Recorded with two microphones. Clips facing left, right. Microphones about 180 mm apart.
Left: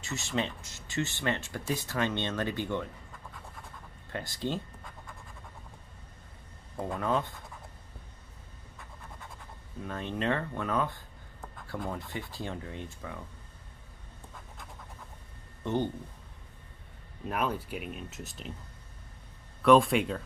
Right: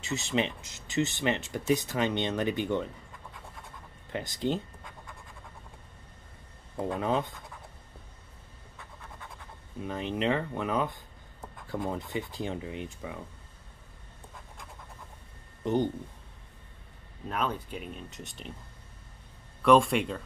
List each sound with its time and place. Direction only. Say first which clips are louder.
0.6 s speech: right 4 dB; 20° right (ahead or behind)
4.1 s speech: right 4 dB; 20° right (ahead or behind)
7.0 s speech: even; 20° right (ahead or behind)
9.8 s speech: right 3 dB; 15° right (ahead or behind)
15.6 s speech: right 3 dB; 15° right (ahead or behind)
17.3 s speech: even; 5° left (ahead or behind)
19.6 s speech: even; centre (ahead or behind)